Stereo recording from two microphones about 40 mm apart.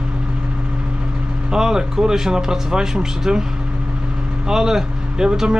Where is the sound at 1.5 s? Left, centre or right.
Centre.